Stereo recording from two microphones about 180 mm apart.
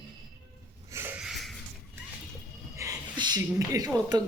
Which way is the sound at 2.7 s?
20° right (ahead or behind).